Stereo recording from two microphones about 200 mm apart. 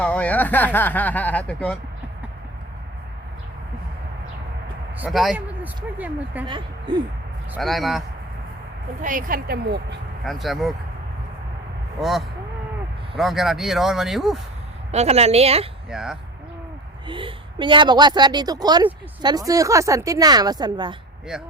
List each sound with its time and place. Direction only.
0.0 s speech: 5° left (ahead or behind)
4.9 s speech: 5° right (ahead or behind)
7.5 s speech: centre (ahead or behind)
9.0 s speech: 40° right (ahead or behind)
10.2 s speech: centre (ahead or behind)
11.9 s speech: centre (ahead or behind)
14.9 s a woman's voice: 30° right (ahead or behind)
15.9 s speech: 5° right (ahead or behind)
17.1 s a woman's voice: 25° right (ahead or behind)